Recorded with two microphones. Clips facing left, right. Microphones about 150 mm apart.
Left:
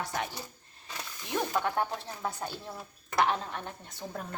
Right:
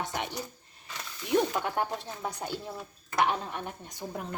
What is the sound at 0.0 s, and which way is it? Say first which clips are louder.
Speech: even; 20° right (ahead or behind).